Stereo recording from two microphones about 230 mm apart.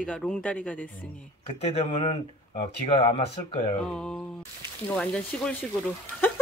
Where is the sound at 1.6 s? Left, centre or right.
Left.